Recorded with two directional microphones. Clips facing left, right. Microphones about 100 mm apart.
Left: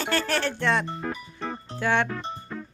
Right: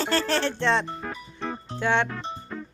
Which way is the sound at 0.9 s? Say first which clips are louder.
Left 2 dB; centre (ahead or behind).